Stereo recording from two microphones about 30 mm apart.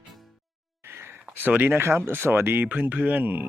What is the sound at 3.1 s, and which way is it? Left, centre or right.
Speech, right.